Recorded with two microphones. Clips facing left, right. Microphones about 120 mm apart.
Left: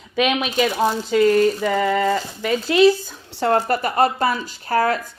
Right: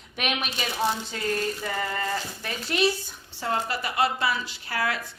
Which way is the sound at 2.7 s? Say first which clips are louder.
Left 10 dB; 90° left.